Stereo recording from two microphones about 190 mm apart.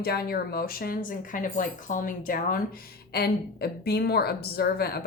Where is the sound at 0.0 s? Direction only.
55° left (ahead or behind).